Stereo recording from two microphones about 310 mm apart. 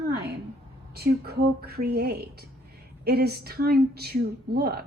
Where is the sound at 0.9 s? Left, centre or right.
Right.